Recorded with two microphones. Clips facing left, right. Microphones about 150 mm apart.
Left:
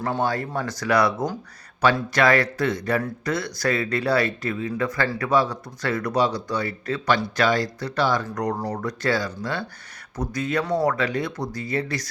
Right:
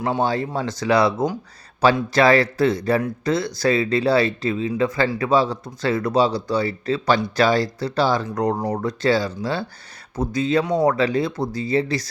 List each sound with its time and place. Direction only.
0.2 s speech: 25° right (ahead or behind)